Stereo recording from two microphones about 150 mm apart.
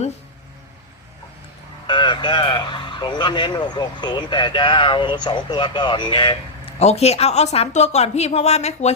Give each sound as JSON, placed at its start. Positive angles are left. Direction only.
{"t": 1.9, "sound": "speech", "side_deg": 30}
{"t": 6.7, "sound": "a woman's voice", "side_deg": 45}